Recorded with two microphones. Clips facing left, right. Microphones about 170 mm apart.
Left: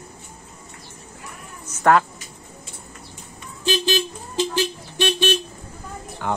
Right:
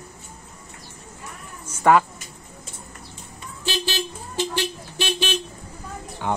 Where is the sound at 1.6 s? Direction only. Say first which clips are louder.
Even; 10° right (ahead or behind).